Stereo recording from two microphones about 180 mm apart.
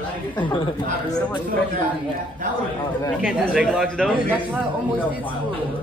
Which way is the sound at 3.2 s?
5° right (ahead or behind).